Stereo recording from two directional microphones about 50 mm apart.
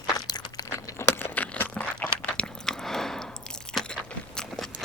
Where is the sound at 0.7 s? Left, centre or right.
Left.